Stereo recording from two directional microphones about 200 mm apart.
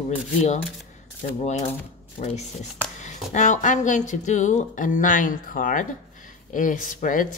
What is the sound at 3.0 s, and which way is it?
Speech, 40° left (ahead or behind).